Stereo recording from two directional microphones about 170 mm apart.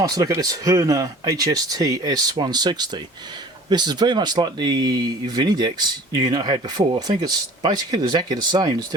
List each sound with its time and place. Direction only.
0.0 s speech: 20° right (ahead or behind)